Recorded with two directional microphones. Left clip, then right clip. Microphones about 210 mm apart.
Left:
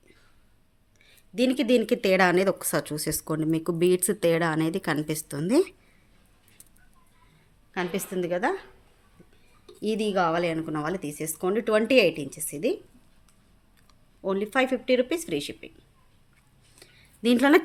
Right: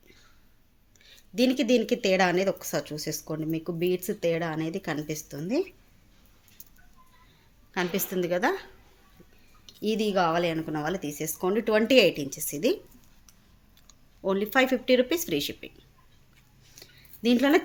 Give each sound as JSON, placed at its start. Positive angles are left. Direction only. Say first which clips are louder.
{"t": 0.9, "sound": "speech", "louder": "even", "side_deg": 5}
{"t": 7.7, "sound": "speech", "louder": "right 1 dB", "side_deg": 5}
{"t": 9.8, "sound": "speech", "louder": "even", "side_deg": 10}
{"t": 14.2, "sound": "speech", "louder": "right 1 dB", "side_deg": 0}
{"t": 16.8, "sound": "a sound", "louder": "left 1 dB", "side_deg": 15}